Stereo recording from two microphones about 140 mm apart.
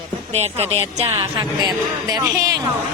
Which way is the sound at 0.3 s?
50° right (ahead or behind).